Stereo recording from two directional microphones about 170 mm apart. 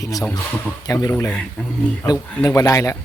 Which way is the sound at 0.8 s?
20° left (ahead or behind).